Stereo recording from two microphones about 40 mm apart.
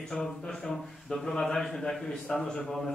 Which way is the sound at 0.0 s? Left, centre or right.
Centre.